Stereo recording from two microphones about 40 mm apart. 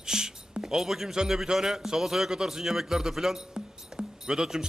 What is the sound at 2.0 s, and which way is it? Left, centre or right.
A man's voice, centre.